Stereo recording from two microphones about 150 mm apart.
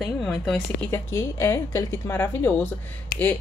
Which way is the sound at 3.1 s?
90° left.